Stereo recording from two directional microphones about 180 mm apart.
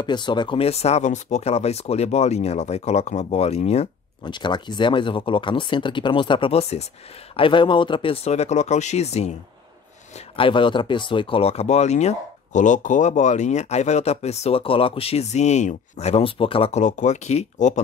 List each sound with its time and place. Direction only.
0.0 s speech: 25° left (ahead or behind); by 17.7 s 40° left (ahead or behind)